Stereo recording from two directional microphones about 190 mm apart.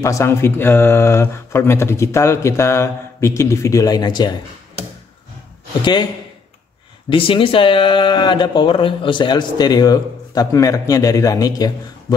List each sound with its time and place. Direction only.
0.0 s speech: 15° left (ahead or behind)
7.1 s speech: 25° left (ahead or behind)